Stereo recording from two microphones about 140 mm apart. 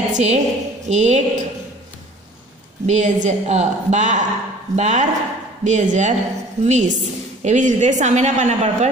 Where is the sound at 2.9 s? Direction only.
55° right (ahead or behind).